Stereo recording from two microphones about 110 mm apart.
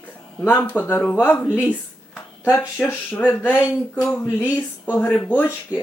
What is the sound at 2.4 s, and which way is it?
Speech, 20° left (ahead or behind).